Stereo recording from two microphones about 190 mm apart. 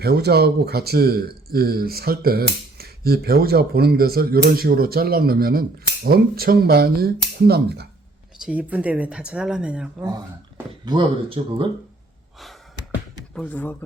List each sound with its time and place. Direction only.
0.0 s speech: 55° right (ahead or behind)
8.4 s speech: 5° right (ahead or behind)
10.8 s speech: 25° right (ahead or behind)
13.3 s speech: 5° left (ahead or behind)